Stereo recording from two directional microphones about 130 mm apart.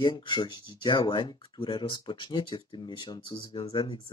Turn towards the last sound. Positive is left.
turn(degrees=40)  # may be behind; listen again after turning